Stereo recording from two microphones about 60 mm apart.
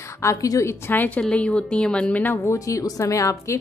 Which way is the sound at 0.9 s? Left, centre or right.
Left.